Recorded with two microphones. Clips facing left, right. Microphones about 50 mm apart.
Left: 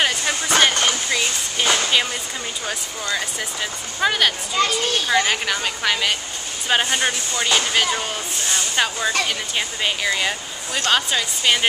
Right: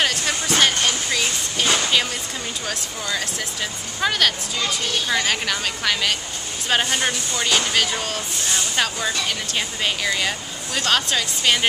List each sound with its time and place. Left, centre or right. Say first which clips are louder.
0.0 s music: left 1 dB; centre
2.6 s speech: left 1 dB; centre
4.6 s speech: left 7 dB; left
5.0 s speech: left 2 dB; centre